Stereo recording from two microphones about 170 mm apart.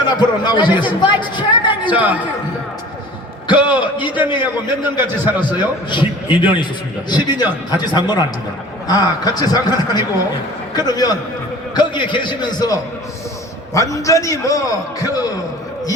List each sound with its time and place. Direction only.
0.0 s a man's voice: 25° left (ahead or behind)
1.9 s a man's voice: 10° right (ahead or behind)
3.6 s a man's voice: 5° right (ahead or behind)
4.3 s a man's voice: 25° left (ahead or behind)
4.9 s a man's voice: 10° right (ahead or behind)
5.5 s a man's voice: 25° left (ahead or behind)